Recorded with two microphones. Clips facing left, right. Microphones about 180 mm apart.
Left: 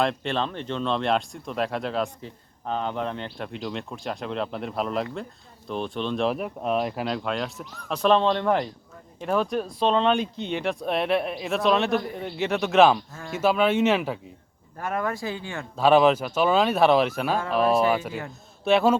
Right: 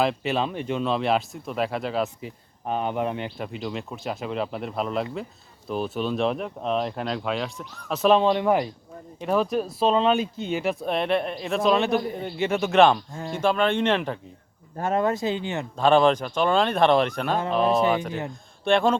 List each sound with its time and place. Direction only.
0.0 s speech: 5° right (ahead or behind)
14.8 s speech: 25° right (ahead or behind)
15.8 s speech: 5° left (ahead or behind)